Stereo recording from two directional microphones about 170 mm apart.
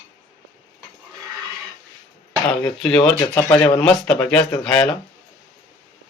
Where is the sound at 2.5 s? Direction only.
5° left (ahead or behind).